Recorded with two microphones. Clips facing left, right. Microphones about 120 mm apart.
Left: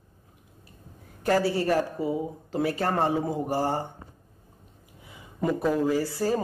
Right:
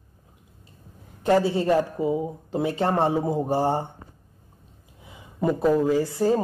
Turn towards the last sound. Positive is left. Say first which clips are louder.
# right 4 dB
turn(degrees=-20)  # may be behind; listen again after turning